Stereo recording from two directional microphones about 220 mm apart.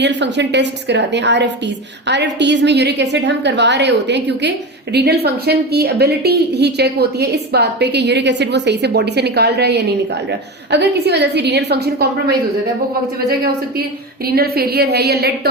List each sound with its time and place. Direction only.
0.0 s a woman's voice: 50° right (ahead or behind)
14.3 s a woman's voice: 45° right (ahead or behind)